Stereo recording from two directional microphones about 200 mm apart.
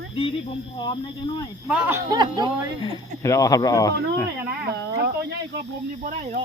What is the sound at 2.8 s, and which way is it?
Speech, 15° left (ahead or behind).